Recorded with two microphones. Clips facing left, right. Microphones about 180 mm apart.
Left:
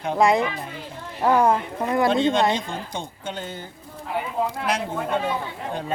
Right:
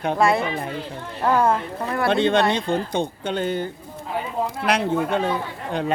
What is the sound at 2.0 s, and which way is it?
Speech, 65° right (ahead or behind).